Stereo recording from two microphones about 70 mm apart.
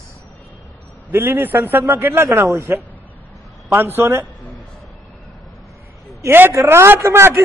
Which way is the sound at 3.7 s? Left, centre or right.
Right.